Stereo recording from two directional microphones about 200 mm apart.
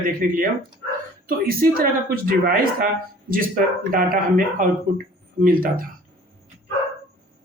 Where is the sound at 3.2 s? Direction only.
45° right (ahead or behind).